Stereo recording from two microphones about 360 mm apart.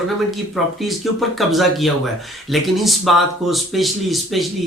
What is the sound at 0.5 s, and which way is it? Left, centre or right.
Speech, centre.